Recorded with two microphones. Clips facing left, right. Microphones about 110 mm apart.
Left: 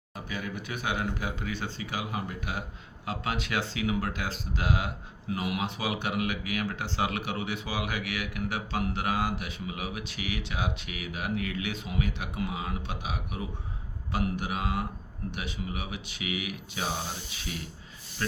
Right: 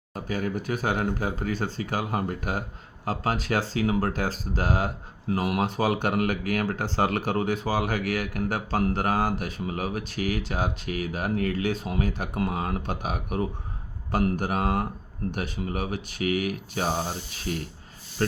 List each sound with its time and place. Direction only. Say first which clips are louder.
0.1 s speech: right 7 dB; 40° right (ahead or behind)